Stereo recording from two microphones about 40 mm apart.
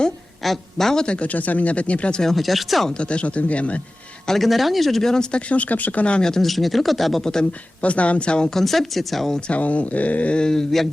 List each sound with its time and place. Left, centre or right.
0.4 s a man's voice: centre
0.9 s speech: left
2.2 s speech: centre
2.9 s speech: left
4.4 s speech: centre
5.1 s speech: centre
5.5 s speech: left
6.1 s a sound: centre
6.4 s speech: centre
7.8 s speech: left
8.4 s speech: centre
9.5 s speech: left
10.3 s a sound: centre